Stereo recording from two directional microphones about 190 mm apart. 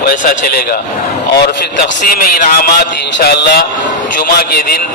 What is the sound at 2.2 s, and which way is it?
A man's voice, 50° left (ahead or behind).